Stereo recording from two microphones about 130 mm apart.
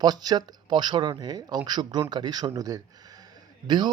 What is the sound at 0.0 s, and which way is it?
Speech, 30° right (ahead or behind).